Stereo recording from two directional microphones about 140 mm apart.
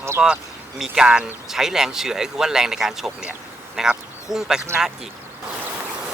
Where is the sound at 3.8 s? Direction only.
5° right (ahead or behind).